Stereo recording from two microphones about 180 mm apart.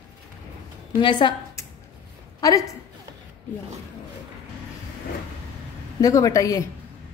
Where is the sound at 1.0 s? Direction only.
25° left (ahead or behind).